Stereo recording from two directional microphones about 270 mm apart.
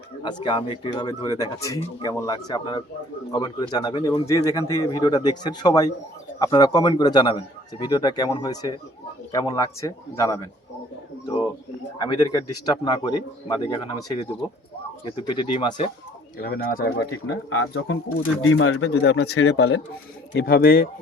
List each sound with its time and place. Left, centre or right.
0.4 s speech: centre
11.9 s speech: centre
15.3 s speech: centre
16.4 s speech: left
19.5 s speech: left